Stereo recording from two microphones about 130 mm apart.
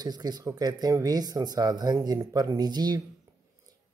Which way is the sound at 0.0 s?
30° right (ahead or behind).